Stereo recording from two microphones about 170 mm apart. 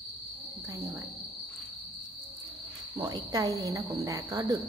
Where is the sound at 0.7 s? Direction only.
25° right (ahead or behind).